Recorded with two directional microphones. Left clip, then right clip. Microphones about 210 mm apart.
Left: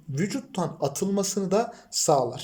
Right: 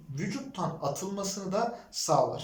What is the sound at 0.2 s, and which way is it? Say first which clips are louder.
Speech: left 5 dB; 45° left (ahead or behind).